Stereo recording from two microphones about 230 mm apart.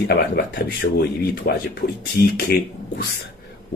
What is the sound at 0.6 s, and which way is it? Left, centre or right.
Speech, left.